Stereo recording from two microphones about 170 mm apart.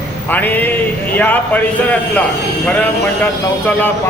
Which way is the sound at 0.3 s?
10° left (ahead or behind).